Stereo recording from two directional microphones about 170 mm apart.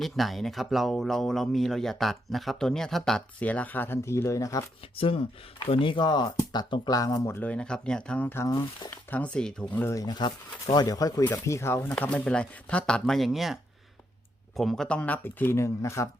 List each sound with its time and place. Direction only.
0.0 s speech: centre (ahead or behind); by 4.6 s 20° left (ahead or behind)
4.9 s speech: 35° left (ahead or behind)
9.0 s speech: 10° left (ahead or behind)